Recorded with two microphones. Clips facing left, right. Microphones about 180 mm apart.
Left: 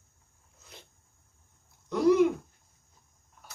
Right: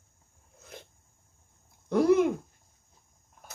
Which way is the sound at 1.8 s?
50° right (ahead or behind).